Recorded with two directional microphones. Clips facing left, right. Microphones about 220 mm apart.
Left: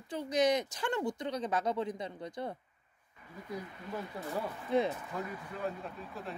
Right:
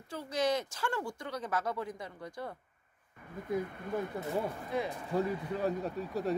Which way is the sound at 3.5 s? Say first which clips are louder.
Right 7 dB; 50° right (ahead or behind).